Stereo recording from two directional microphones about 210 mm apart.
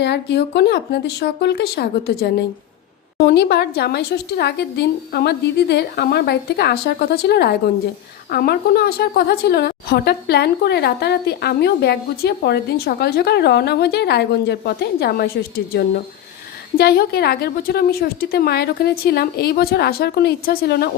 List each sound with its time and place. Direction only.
0.0 s a woman's voice: 55° left (ahead or behind)